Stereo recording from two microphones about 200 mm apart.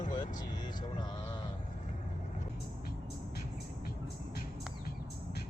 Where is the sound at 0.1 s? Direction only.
20° left (ahead or behind).